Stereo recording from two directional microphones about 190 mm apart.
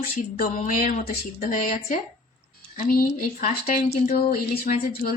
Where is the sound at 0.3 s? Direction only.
45° left (ahead or behind).